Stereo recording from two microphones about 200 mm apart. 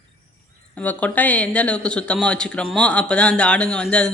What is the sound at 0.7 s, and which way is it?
Speech, 5° left (ahead or behind).